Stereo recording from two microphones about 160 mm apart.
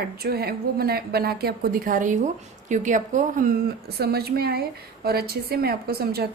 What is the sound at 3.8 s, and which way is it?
A woman's voice, 80° right.